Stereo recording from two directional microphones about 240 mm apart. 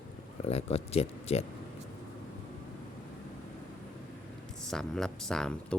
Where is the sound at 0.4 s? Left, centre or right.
Left.